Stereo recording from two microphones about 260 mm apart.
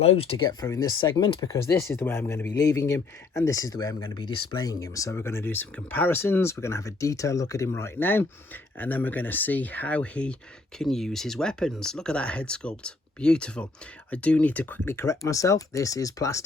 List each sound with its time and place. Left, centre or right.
0.0 s speech: left